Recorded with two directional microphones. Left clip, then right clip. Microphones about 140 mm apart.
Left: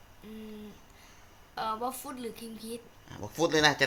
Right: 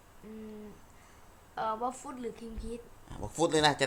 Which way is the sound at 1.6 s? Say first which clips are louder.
Even; centre (ahead or behind).